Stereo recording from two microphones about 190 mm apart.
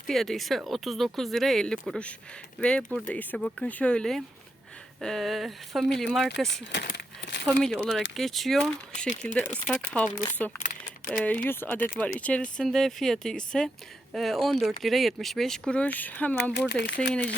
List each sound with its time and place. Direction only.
0.1 s speech: centre (ahead or behind)
6.7 s crumpling: 65° left (ahead or behind)
7.4 s speech: centre (ahead or behind)
16.6 s speech: 65° left (ahead or behind)